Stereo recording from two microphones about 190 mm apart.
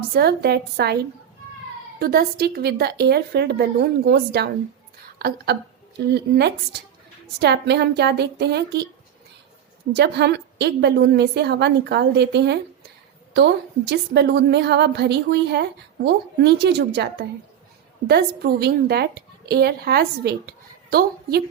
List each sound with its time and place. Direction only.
0.1 s a woman's voice: 55° right (ahead or behind)
2.0 s a woman's voice: 55° right (ahead or behind)
6.1 s a woman's voice: 60° right (ahead or behind)
9.9 s a woman's voice: 60° right (ahead or behind)